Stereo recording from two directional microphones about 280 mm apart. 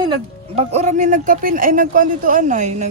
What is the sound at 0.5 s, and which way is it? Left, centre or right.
Speech, right.